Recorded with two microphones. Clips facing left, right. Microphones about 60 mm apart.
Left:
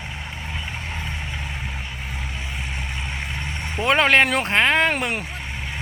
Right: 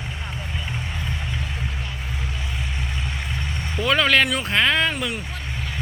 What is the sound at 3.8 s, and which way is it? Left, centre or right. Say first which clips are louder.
Speech: left 2 dB; left.